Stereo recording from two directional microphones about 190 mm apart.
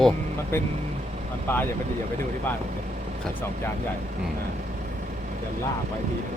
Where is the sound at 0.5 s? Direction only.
15° left (ahead or behind).